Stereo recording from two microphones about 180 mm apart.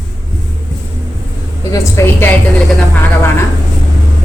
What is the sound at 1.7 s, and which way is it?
Speech, 15° left (ahead or behind).